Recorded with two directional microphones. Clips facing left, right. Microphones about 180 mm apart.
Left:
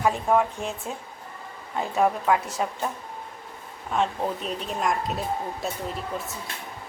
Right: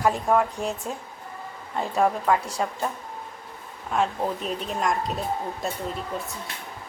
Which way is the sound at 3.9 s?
Centre (ahead or behind).